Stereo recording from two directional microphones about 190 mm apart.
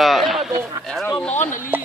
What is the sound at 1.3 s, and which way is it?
Speech, 40° left (ahead or behind).